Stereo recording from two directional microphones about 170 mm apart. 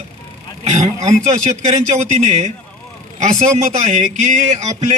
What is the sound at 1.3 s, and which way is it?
A man's voice, 40° right (ahead or behind).